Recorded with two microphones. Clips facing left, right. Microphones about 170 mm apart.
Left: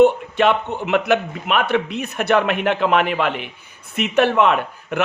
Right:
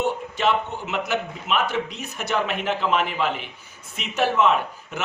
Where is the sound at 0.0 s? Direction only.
60° left (ahead or behind).